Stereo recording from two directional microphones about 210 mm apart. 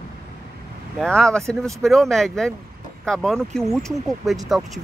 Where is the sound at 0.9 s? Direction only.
5° left (ahead or behind).